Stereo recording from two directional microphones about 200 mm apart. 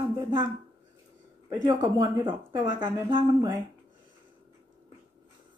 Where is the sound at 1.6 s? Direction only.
20° right (ahead or behind).